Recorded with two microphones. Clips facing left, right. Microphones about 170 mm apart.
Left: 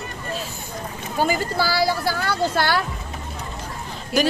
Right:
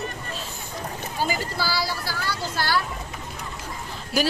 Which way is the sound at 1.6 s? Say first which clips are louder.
Left 7 dB; 50° left (ahead or behind).